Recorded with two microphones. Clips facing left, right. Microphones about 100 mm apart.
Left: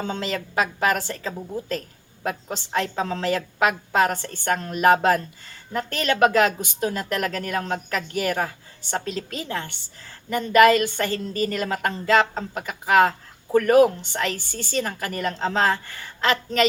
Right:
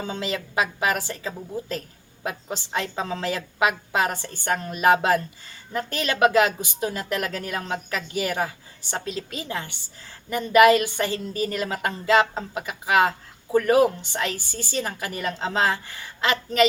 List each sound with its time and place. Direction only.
0.0 s a woman's voice: 5° right (ahead or behind)
13.7 s speech: 55° left (ahead or behind)
14.0 s a woman's voice: 5° right (ahead or behind)